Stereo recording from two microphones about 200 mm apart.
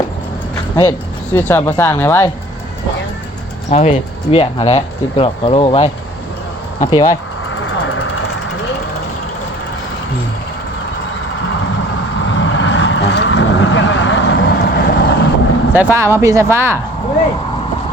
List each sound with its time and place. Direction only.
0.8 s speech: 10° left (ahead or behind)
3.7 s speech: 30° left (ahead or behind)
7.5 s vehicle: 70° left (ahead or behind)
12.3 s vehicle: 70° left (ahead or behind)
15.7 s speech: 10° right (ahead or behind)